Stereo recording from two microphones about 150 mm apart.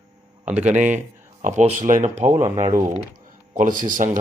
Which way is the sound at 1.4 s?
55° right (ahead or behind).